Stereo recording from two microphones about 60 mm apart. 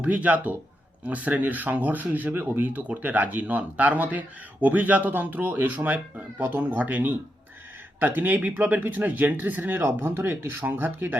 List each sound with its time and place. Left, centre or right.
0.0 s speech: right